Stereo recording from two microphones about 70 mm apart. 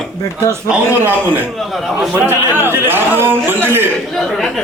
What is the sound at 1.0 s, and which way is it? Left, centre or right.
A man's voice, right.